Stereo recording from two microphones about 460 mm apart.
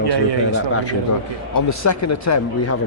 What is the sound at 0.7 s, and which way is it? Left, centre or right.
Speech, left.